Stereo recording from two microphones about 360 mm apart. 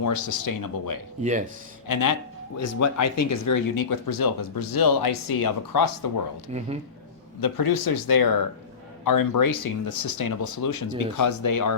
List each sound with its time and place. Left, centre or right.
0.0 s speech: left
1.2 s speech: centre
1.9 s speech: left
2.6 s speech: left
6.5 s speech: centre
7.4 s speech: left